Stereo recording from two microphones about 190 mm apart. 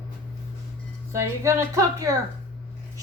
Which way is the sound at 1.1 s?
15° right (ahead or behind).